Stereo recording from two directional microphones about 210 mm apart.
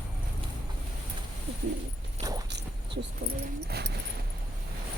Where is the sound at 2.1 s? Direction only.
20° right (ahead or behind).